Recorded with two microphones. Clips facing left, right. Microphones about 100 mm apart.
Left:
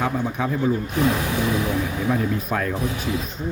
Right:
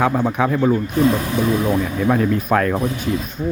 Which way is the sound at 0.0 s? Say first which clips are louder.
Right 6 dB; 65° right (ahead or behind).